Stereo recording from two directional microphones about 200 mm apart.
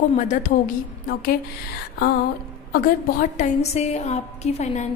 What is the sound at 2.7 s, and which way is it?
A woman's voice, 40° left (ahead or behind).